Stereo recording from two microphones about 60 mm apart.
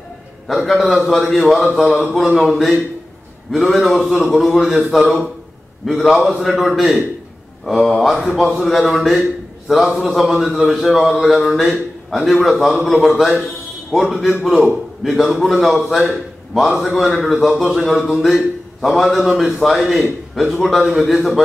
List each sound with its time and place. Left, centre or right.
0.5 s a man's voice: centre